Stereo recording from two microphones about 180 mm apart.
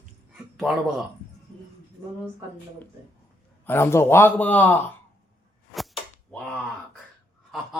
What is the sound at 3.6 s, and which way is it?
A man's voice, 15° left (ahead or behind).